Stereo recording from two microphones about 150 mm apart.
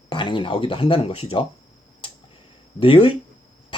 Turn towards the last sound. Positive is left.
turn(degrees=35)  # may be behind; listen again after turning